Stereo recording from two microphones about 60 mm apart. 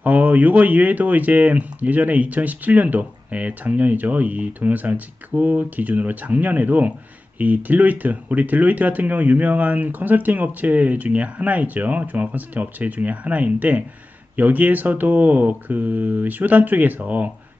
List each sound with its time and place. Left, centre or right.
0.0 s speech: right